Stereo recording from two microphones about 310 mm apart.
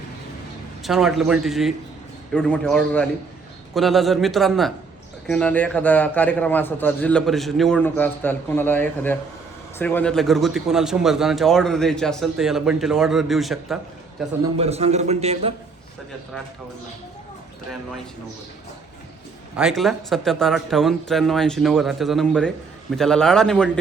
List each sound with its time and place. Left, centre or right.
0.8 s a man's voice: centre
14.6 s a man's voice: centre
19.5 s a man's voice: centre